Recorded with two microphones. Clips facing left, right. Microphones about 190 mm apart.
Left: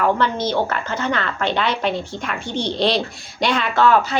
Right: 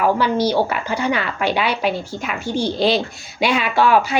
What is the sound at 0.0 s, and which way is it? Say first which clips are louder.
A woman's voice: right 2 dB; 10° right (ahead or behind).